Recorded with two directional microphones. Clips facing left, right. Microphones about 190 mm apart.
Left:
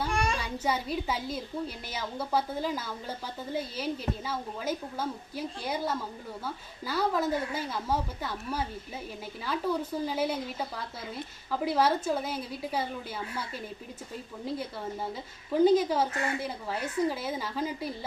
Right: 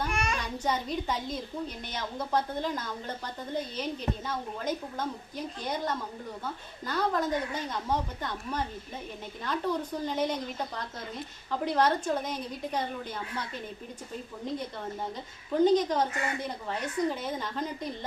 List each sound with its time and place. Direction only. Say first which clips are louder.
0.1 s a sound: left 2 dB; 30° left (ahead or behind)
0.3 s a woman's voice: even; 10° left (ahead or behind)
14.5 s a woman's voice: left 1 dB; 5° left (ahead or behind)